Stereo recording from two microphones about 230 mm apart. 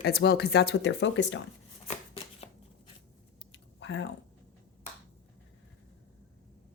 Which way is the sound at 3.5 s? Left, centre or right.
Left.